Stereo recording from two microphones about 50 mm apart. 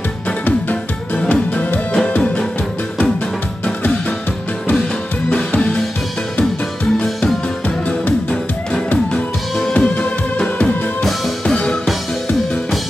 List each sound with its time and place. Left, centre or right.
0.5 s music: left
5.5 s music: left
9.8 s music: left